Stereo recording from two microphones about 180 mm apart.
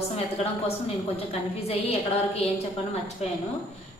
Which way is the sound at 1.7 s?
35° left (ahead or behind).